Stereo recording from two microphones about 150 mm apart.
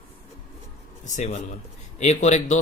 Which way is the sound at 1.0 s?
50° left (ahead or behind).